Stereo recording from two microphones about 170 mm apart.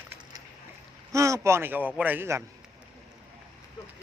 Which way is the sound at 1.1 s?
20° right (ahead or behind).